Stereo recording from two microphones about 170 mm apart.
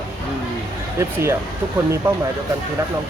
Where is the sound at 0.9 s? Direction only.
15° right (ahead or behind).